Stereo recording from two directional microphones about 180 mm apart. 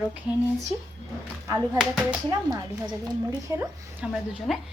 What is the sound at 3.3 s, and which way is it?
Speech, 20° right (ahead or behind).